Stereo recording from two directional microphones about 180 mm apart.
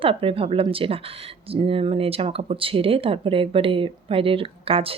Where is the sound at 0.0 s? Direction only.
30° right (ahead or behind).